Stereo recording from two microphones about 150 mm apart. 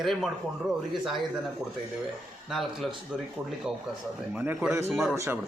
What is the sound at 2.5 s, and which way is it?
Speech, centre (ahead or behind).